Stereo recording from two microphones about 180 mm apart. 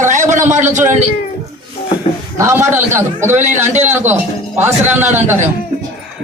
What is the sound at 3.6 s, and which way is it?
Speech, 40° right (ahead or behind).